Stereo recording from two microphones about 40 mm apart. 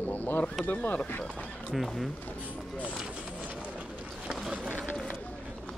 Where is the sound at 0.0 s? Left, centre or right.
Left.